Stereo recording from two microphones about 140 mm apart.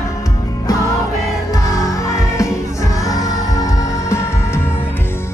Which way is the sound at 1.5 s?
25° left (ahead or behind).